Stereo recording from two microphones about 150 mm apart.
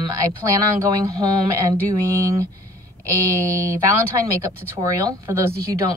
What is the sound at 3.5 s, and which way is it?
Speech, 20° right (ahead or behind).